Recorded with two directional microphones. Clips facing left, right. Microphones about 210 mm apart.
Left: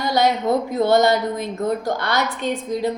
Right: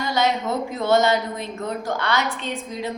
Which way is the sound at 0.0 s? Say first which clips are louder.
Left 3 dB; 35° left (ahead or behind).